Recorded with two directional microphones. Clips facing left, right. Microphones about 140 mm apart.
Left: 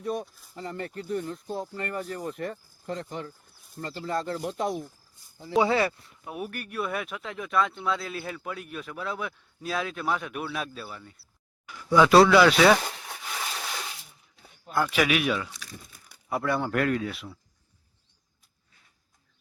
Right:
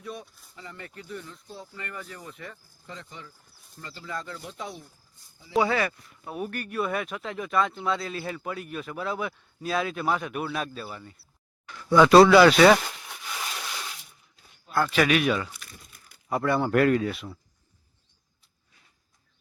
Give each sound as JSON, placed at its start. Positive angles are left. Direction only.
{"t": 0.0, "sound": "speech", "side_deg": 45}
{"t": 5.5, "sound": "speech", "side_deg": 25}
{"t": 6.2, "sound": "speech", "side_deg": 10}
{"t": 11.6, "sound": "speech", "side_deg": 10}
{"t": 14.7, "sound": "speech", "side_deg": 10}